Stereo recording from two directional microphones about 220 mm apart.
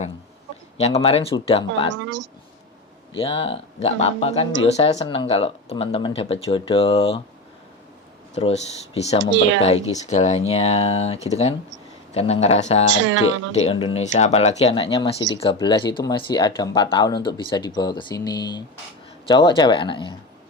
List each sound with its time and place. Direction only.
0.8 s speech: 30° left (ahead or behind)
2.0 s speech: 55° right (ahead or behind)
3.2 s speech: 25° left (ahead or behind)
8.4 s speech: 30° left (ahead or behind)
9.3 s speech: 55° right (ahead or behind)
9.6 s speech: 30° left (ahead or behind)
12.9 s speech: 60° right (ahead or behind)
13.7 s speech: 25° left (ahead or behind)